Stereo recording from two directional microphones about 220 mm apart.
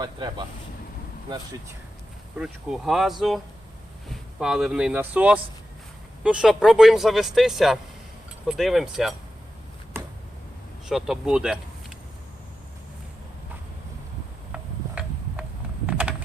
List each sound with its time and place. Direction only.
0.0 s speech: 20° right (ahead or behind)
2.4 s speech: centre (ahead or behind)
10.8 s speech: centre (ahead or behind)
14.5 s a sound: 5° right (ahead or behind)
15.9 s typing: 5° right (ahead or behind)